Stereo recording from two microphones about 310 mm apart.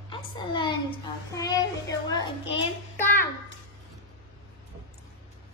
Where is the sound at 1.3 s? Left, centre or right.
Centre.